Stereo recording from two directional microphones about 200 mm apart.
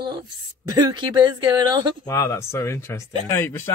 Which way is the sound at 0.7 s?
20° right (ahead or behind).